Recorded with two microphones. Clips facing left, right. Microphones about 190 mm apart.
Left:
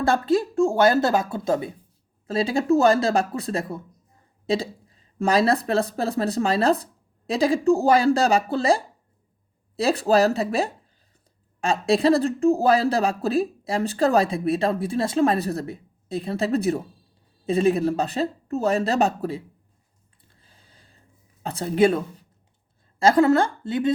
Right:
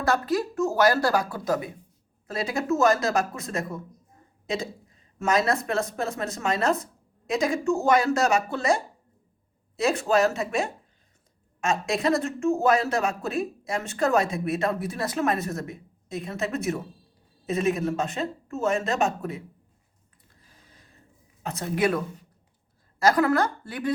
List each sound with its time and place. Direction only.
0.0 s speech: 30° left (ahead or behind)
20.3 s a sound: 30° left (ahead or behind)
21.4 s speech: 30° left (ahead or behind)